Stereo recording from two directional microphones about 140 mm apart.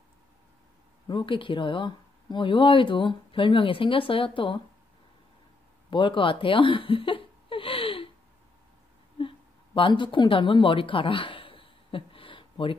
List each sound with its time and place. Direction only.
1.0 s speech: 35° left (ahead or behind)
5.9 s a sound: 35° left (ahead or behind)
9.8 s speech: 35° left (ahead or behind)